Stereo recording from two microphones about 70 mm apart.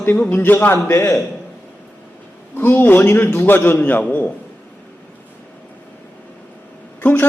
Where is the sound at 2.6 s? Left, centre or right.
Left.